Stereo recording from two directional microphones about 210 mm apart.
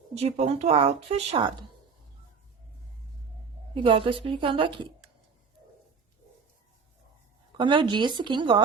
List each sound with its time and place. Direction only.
0.2 s speech: 30° right (ahead or behind)
3.8 s speech: 25° right (ahead or behind)
7.5 s speech: 25° right (ahead or behind)